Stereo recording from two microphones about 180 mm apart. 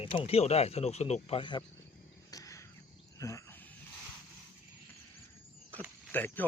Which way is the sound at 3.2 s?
15° left (ahead or behind).